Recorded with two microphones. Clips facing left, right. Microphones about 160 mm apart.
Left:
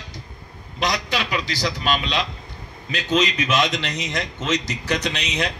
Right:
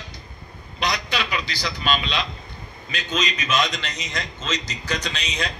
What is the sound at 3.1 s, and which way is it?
A man's voice, 70° left (ahead or behind).